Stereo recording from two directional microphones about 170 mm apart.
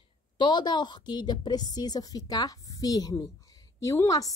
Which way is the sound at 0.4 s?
25° left (ahead or behind).